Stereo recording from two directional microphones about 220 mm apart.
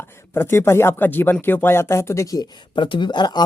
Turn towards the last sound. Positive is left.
turn(degrees=20)  # may be behind; listen again after turning